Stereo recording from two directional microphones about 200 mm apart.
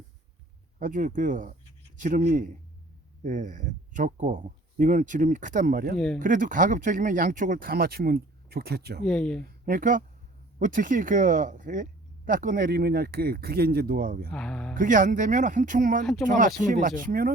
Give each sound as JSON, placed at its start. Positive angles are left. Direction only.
{"t": 0.8, "sound": "speech", "side_deg": -40}
{"t": 9.0, "sound": "speech", "side_deg": 5}
{"t": 9.4, "sound": "speech", "side_deg": -45}
{"t": 14.3, "sound": "speech", "side_deg": 5}
{"t": 14.8, "sound": "speech", "side_deg": -40}